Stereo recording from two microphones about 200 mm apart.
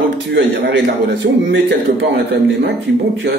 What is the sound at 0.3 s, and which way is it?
A man's voice, 60° right (ahead or behind).